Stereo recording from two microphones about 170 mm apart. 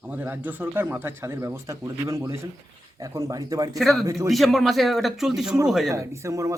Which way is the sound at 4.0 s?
20° right (ahead or behind).